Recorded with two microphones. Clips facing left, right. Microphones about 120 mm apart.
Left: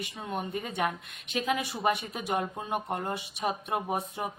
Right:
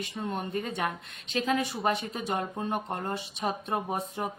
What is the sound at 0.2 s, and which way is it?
Speech, 10° left (ahead or behind).